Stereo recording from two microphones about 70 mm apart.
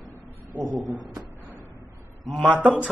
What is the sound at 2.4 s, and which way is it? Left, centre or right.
Speech, right.